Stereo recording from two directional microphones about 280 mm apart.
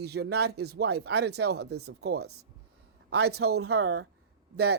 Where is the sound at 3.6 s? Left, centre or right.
Right.